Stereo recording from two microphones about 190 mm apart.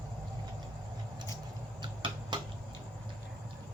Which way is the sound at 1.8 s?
25° right (ahead or behind).